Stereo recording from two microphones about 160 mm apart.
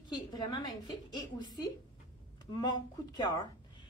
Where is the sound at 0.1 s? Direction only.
25° left (ahead or behind).